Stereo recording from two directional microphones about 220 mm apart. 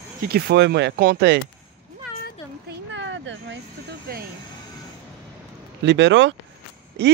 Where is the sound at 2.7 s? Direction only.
55° right (ahead or behind).